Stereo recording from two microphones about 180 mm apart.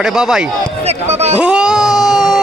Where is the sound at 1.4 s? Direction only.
5° right (ahead or behind).